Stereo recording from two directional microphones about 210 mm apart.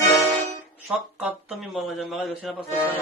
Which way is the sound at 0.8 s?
5° right (ahead or behind).